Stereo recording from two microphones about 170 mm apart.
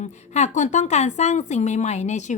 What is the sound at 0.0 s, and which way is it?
Speech, 45° left (ahead or behind).